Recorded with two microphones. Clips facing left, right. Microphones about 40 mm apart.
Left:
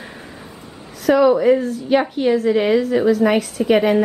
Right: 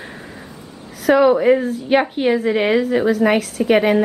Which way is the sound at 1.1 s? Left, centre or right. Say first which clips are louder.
Right 1 dB; centre.